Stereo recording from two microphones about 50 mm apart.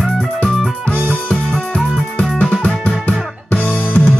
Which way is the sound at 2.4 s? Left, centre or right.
Left.